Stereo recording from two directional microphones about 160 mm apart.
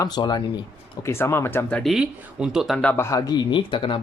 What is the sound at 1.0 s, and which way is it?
Speech, 15° left (ahead or behind).